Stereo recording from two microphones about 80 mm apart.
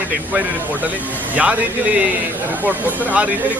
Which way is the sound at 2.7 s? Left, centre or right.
Centre.